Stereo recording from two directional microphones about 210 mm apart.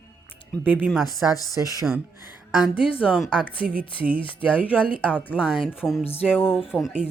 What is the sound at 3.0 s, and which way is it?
Speech, centre (ahead or behind).